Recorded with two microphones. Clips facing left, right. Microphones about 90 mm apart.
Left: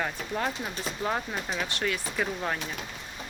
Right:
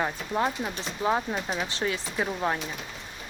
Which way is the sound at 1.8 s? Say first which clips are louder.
Right 1 dB; 25° right (ahead or behind).